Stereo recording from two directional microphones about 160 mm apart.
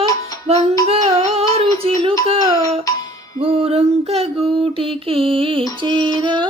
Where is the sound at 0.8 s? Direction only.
40° right (ahead or behind).